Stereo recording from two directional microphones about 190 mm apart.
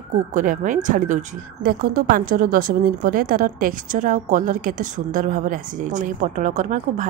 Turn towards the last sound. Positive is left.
turn(degrees=-40)  # may be behind; listen again after turning